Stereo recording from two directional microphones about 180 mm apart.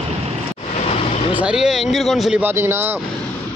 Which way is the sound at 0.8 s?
35° left (ahead or behind).